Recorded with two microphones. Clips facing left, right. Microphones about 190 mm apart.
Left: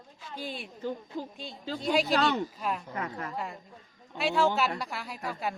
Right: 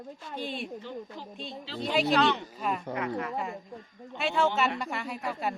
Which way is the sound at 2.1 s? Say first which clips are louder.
Right 1 dB; 45° left (ahead or behind).